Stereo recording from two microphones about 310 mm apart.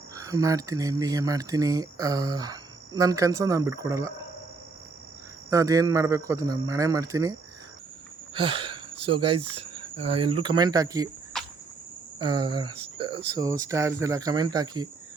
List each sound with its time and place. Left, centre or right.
0.1 s speech: centre
5.5 s speech: centre
8.4 s speech: centre
11.3 s cricket: centre
12.2 s speech: centre